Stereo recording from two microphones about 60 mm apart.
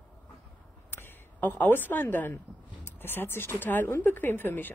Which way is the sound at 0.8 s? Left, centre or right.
Left.